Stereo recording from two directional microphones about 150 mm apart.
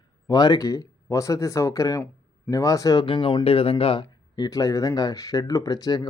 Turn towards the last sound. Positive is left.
turn(degrees=25)  # may be behind; listen again after turning